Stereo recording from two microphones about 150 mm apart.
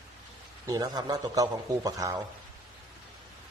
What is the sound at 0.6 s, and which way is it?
A man's voice, 25° right (ahead or behind).